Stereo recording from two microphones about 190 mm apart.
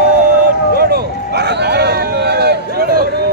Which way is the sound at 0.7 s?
55° right (ahead or behind).